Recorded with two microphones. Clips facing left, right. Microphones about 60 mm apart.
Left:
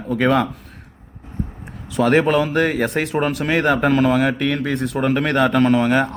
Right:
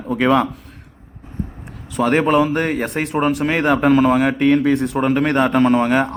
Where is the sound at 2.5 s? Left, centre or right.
Centre.